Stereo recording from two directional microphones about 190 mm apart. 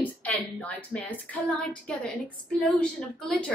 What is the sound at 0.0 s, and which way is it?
A woman's voice, 10° left (ahead or behind).